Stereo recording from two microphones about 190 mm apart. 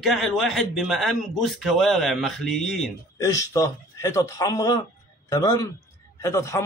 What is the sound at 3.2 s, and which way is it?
A man's voice, 20° left (ahead or behind).